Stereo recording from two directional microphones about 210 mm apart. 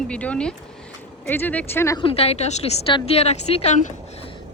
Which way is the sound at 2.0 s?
25° left (ahead or behind).